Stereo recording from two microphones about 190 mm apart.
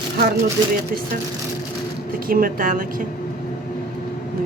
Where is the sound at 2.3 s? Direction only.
50° right (ahead or behind).